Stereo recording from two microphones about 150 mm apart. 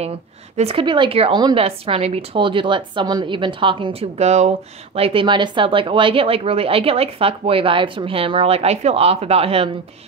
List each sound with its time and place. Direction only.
0.6 s speech: 40° right (ahead or behind)